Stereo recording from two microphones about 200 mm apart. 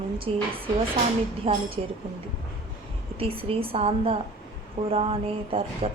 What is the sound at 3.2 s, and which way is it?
Speech, 30° right (ahead or behind).